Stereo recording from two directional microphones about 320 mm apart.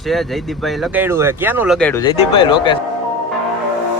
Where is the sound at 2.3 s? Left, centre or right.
Centre.